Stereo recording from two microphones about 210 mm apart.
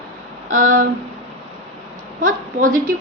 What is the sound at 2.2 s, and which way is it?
Speech, 40° right (ahead or behind).